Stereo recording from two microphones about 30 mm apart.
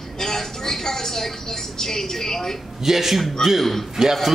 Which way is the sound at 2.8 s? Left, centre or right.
Centre.